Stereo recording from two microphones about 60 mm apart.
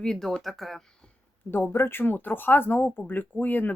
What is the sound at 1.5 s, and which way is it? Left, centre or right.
Speech, left.